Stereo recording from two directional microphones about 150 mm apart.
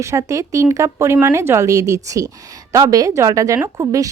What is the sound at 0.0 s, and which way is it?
Speech, 20° right (ahead or behind).